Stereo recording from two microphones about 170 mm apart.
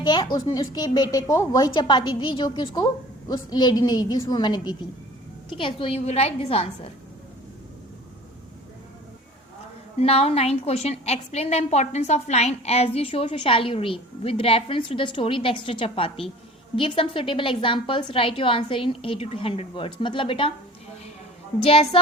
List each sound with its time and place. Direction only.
0.0 s a woman's voice: 25° left (ahead or behind)
10.0 s a woman's voice: 35° left (ahead or behind)
21.6 s a woman's voice: 35° left (ahead or behind)